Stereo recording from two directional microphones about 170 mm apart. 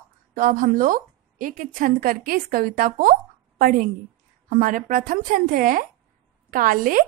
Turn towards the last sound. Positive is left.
turn(degrees=-55)  # may be behind; listen again after turning